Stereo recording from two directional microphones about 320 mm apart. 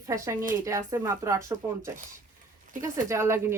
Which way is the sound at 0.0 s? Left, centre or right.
Centre.